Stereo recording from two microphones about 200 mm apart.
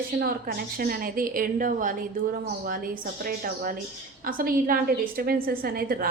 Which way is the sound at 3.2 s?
45° right (ahead or behind).